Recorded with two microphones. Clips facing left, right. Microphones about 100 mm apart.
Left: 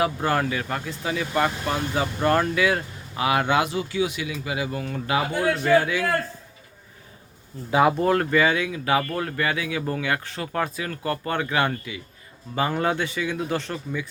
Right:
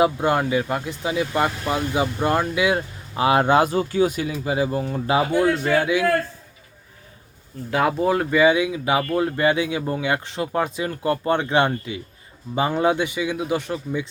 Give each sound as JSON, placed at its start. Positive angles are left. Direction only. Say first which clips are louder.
{"t": 0.0, "sound": "speech", "louder": "right 4 dB", "side_deg": -20}
{"t": 3.2, "sound": "speech", "louder": "right 5 dB", "side_deg": -30}
{"t": 5.6, "sound": "speech", "louder": "even", "side_deg": -15}
{"t": 7.9, "sound": "speech", "louder": "even", "side_deg": -5}